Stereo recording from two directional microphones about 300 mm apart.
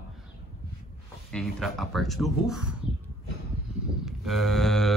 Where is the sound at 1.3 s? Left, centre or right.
Centre.